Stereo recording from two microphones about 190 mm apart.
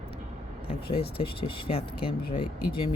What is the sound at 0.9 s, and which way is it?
Speech, 30° left (ahead or behind).